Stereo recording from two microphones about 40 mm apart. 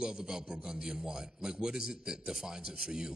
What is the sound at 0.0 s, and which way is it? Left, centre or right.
A man's voice, centre.